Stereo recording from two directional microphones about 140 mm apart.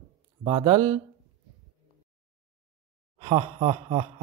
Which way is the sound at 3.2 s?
40° right (ahead or behind).